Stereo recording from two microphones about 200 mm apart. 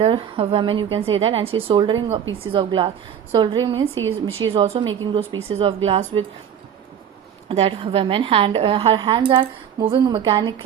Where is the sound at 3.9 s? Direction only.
90° right.